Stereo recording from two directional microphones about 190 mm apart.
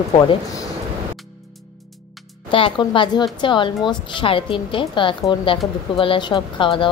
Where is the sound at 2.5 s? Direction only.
25° left (ahead or behind).